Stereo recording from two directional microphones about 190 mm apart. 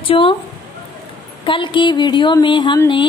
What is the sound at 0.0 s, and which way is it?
Speech, 25° left (ahead or behind).